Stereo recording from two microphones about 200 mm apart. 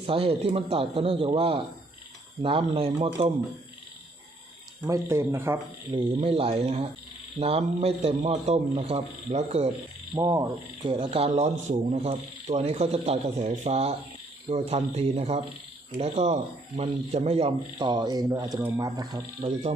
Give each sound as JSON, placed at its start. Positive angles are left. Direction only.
{"t": 0.0, "sound": "speech", "side_deg": -30}
{"t": 4.9, "sound": "speech", "side_deg": -15}
{"t": 5.9, "sound": "speech", "side_deg": -30}
{"t": 10.2, "sound": "speech", "side_deg": -15}
{"t": 10.8, "sound": "speech", "side_deg": -30}